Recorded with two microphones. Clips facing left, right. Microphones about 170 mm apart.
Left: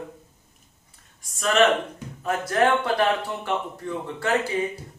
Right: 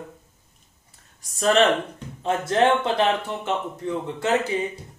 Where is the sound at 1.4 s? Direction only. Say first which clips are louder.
Right 1 dB; 35° right (ahead or behind).